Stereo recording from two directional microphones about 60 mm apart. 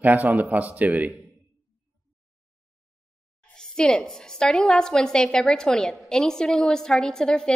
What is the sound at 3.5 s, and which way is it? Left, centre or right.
A woman's voice, centre.